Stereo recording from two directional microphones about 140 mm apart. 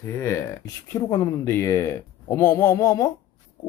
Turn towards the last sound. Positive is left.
turn(degrees=25)  # may be behind; listen again after turning